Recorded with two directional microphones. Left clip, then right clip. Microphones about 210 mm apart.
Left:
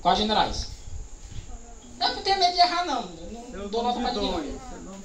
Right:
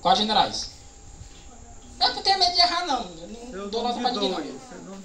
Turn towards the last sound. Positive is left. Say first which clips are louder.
# right 1 dB
turn(degrees=-35)  # may be behind; listen again after turning